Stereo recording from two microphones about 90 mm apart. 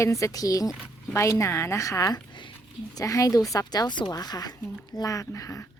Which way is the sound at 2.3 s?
60° left (ahead or behind).